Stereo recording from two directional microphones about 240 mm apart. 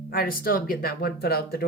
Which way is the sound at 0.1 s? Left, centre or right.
Left.